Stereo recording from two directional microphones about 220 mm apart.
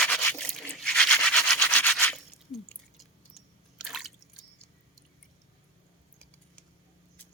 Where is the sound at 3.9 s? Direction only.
Centre (ahead or behind).